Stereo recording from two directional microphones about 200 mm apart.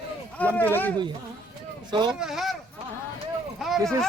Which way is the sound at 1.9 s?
20° right (ahead or behind).